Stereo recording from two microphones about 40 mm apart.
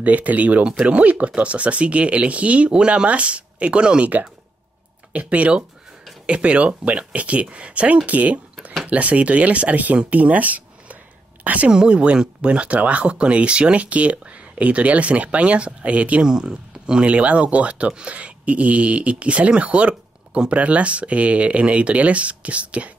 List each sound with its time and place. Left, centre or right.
0.0 s speech: right
5.2 s speech: right
11.7 s speech: right
16.2 s speech: centre
17.0 s speech: right